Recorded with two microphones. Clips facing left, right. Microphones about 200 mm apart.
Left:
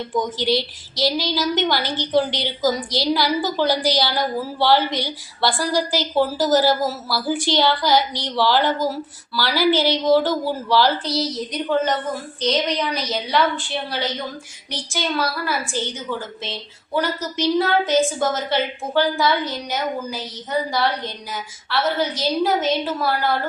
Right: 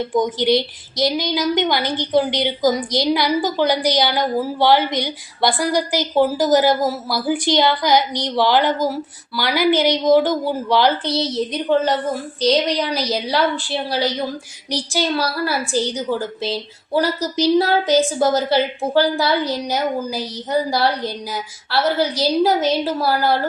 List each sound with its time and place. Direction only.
0.1 s a woman's voice: 20° right (ahead or behind); by 23.4 s 35° right (ahead or behind)